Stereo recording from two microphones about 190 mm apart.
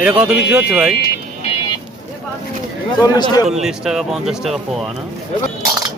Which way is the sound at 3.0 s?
20° left (ahead or behind).